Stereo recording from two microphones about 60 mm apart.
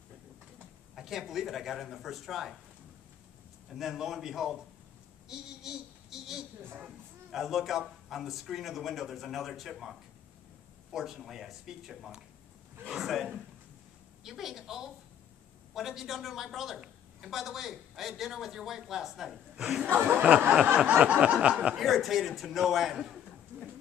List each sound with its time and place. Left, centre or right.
0.9 s a woman's voice: centre
3.7 s a woman's voice: centre
20.0 s a sound: centre
21.7 s a woman's voice: centre
23.5 s horse: right